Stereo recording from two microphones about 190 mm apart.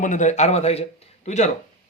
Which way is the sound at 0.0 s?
40° left (ahead or behind).